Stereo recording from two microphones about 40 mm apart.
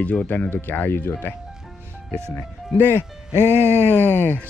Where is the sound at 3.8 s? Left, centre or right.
Left.